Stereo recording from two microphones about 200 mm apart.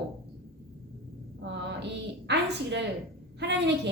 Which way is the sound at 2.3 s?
60° right (ahead or behind).